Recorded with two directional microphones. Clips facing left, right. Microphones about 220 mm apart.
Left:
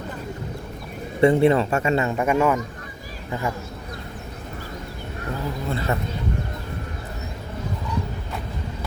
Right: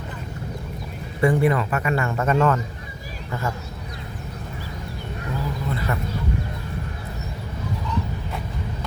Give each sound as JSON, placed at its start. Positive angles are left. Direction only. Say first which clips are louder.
{"t": 1.2, "sound": "a man's voice", "louder": "left 3 dB", "side_deg": 25}
{"t": 5.6, "sound": "a man's voice", "louder": "left 3 dB", "side_deg": 25}